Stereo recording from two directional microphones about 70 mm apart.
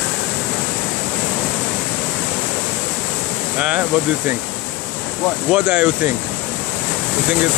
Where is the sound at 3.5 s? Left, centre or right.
Centre.